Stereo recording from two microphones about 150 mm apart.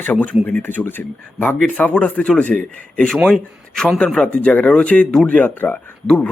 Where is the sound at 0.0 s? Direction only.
10° left (ahead or behind).